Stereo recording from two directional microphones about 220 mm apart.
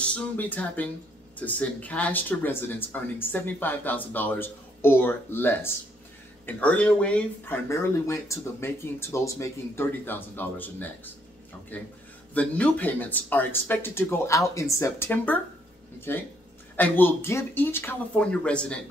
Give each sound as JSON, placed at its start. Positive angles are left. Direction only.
{"t": 0.0, "sound": "speech", "side_deg": 5}